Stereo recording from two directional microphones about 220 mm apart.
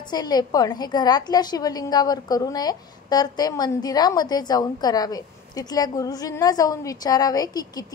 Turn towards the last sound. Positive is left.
turn(degrees=15)  # may be behind; listen again after turning